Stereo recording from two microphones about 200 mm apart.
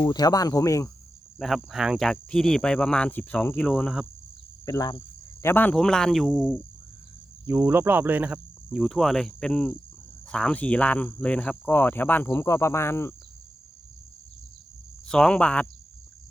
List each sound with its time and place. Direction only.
0.0 s speech: 20° left (ahead or behind)
1.4 s speech: centre (ahead or behind)
4.6 s speech: 20° left (ahead or behind); by 6.6 s centre (ahead or behind)
7.4 s speech: 10° right (ahead or behind); by 13.1 s 10° left (ahead or behind)
15.0 s speech: 5° left (ahead or behind)